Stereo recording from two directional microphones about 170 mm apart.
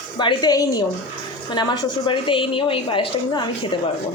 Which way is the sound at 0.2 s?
25° left (ahead or behind).